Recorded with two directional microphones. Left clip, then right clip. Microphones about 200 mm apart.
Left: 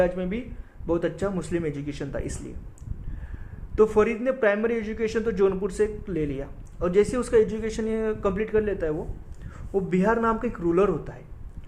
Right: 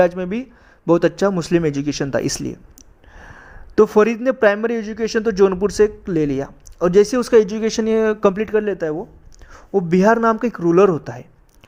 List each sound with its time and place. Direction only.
0.0 s a man's voice: 55° right (ahead or behind)